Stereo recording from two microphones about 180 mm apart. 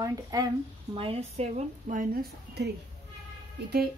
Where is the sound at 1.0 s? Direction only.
35° right (ahead or behind); by 2.6 s 55° right (ahead or behind).